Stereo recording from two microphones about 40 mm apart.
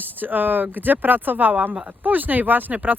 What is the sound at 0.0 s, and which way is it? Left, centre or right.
Speech, right.